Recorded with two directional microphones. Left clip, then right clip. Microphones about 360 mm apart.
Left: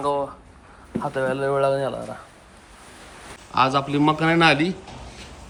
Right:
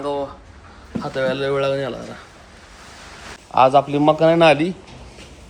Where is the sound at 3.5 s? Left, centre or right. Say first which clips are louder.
Right 6 dB; centre.